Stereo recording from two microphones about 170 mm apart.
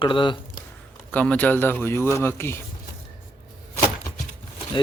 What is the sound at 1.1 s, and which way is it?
Speech, 5° left (ahead or behind).